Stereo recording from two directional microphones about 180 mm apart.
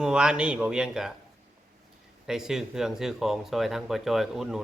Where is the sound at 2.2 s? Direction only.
5° right (ahead or behind).